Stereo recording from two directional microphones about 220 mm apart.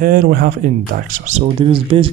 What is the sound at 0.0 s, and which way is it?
Speech, 40° right (ahead or behind).